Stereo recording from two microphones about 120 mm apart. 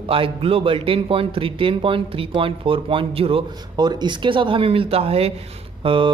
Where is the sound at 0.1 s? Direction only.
50° right (ahead or behind).